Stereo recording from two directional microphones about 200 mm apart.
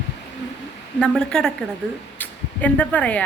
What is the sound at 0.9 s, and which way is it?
Speech, 5° left (ahead or behind).